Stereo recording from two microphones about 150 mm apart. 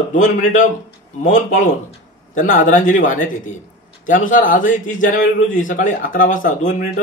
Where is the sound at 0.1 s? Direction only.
55° left (ahead or behind).